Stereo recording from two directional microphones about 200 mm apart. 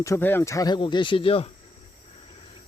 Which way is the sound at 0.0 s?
10° left (ahead or behind).